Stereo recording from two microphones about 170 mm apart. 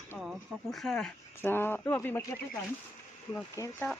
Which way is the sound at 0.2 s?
Centre (ahead or behind).